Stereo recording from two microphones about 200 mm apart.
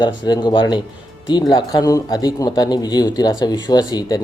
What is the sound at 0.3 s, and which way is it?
Speech, 20° left (ahead or behind).